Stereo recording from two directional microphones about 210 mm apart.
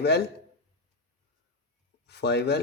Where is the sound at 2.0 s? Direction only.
55° left (ahead or behind).